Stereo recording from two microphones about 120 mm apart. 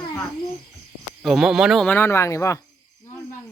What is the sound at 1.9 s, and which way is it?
Speech, 20° left (ahead or behind).